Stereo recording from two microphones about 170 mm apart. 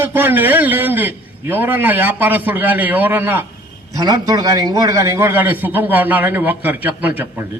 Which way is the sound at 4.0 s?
20° right (ahead or behind).